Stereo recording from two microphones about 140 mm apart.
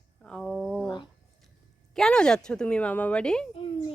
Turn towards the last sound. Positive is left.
turn(degrees=40)  # may be behind; listen again after turning